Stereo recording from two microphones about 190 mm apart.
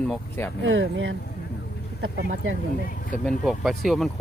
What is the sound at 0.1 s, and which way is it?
Speech, 10° left (ahead or behind).